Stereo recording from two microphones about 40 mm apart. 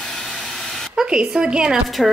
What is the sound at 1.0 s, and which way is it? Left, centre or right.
Speech, right.